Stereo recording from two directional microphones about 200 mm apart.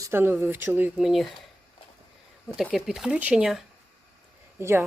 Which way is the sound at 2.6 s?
Centre (ahead or behind).